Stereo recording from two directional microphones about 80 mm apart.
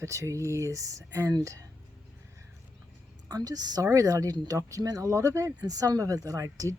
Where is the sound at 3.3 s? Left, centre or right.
Right.